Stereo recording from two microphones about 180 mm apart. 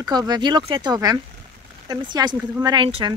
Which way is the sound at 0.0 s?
25° right (ahead or behind).